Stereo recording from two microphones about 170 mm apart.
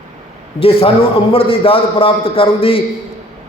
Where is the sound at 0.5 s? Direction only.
35° left (ahead or behind).